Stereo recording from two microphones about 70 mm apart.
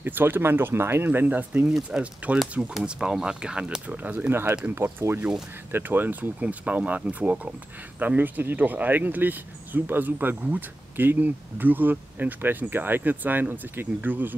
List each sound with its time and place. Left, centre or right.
0.0 s speech: right
1.7 s speech: centre
4.3 s speech: right